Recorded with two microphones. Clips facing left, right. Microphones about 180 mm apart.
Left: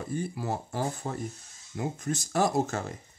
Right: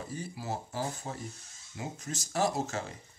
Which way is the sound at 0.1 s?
55° left (ahead or behind).